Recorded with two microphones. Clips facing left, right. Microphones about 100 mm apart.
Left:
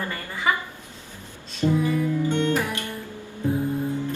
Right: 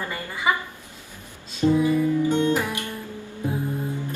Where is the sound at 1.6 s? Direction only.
15° right (ahead or behind).